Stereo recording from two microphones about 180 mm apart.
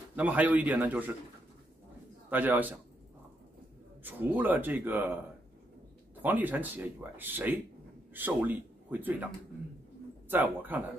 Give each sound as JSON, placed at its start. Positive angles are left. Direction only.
{"t": 0.1, "sound": "speech", "side_deg": -10}
{"t": 2.2, "sound": "speech", "side_deg": -10}
{"t": 4.0, "sound": "speech", "side_deg": -10}
{"t": 6.2, "sound": "a man's voice", "side_deg": -10}